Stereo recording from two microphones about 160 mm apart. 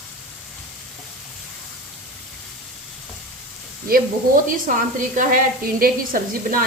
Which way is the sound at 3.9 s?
55° right (ahead or behind).